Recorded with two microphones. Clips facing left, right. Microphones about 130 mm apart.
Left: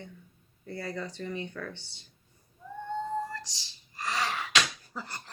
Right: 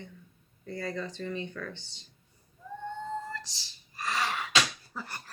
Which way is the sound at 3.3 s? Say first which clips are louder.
Even; 15° left (ahead or behind).